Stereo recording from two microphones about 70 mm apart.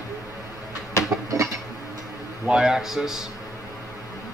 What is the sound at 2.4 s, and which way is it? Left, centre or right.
Speech, centre.